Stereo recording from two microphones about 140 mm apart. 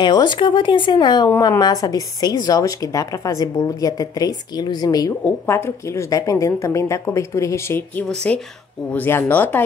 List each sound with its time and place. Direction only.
0.0 s a woman's voice: 30° left (ahead or behind)
5.2 s a woman's voice: 15° left (ahead or behind)
8.1 s speech: 5° left (ahead or behind)